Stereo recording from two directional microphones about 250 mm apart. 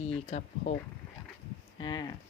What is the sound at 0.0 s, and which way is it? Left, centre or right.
Speech, left.